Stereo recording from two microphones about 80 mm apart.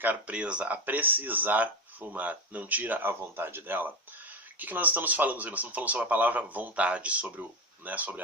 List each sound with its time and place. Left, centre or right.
0.0 s speech: centre